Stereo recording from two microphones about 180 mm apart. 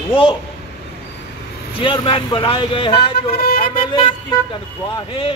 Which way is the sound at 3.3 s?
55° left (ahead or behind).